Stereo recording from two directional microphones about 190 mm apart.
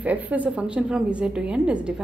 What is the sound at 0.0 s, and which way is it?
A woman's voice, 10° right (ahead or behind).